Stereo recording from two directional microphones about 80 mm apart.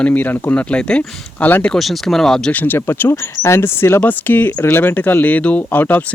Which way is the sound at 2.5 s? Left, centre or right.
Left.